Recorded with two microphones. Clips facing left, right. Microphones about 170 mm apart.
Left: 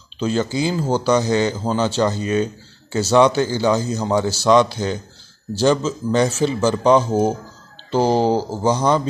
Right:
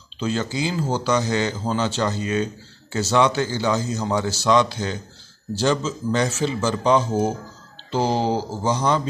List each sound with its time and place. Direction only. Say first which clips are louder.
0.2 s speech: left 4 dB; 35° left (ahead or behind)
6.1 s speech: left 5 dB; 30° left (ahead or behind)